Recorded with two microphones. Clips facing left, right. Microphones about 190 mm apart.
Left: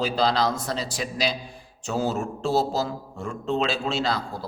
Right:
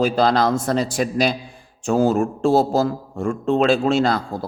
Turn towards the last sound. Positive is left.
turn(degrees=-50)  # may be behind; listen again after turning